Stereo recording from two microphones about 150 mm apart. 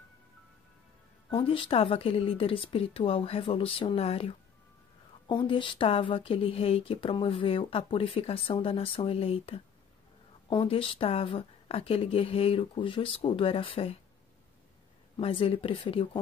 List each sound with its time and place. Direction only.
1.3 s speech: 35° left (ahead or behind)
10.6 s speech: 35° left (ahead or behind)
15.1 s speech: 40° left (ahead or behind)